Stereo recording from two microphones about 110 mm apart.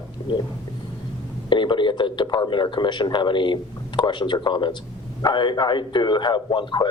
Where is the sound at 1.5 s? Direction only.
45° left (ahead or behind).